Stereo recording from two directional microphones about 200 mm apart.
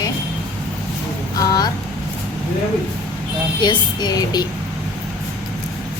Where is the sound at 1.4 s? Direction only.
20° left (ahead or behind).